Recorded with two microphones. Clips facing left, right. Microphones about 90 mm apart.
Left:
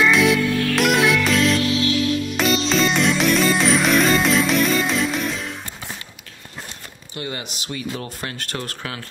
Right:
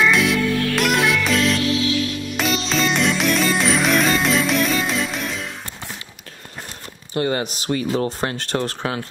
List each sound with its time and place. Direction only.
0.0 s music: centre (ahead or behind)
7.2 s speech: 45° right (ahead or behind)
7.9 s speech: 30° right (ahead or behind)